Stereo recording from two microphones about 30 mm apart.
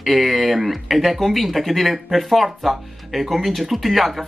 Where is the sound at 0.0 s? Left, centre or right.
Centre.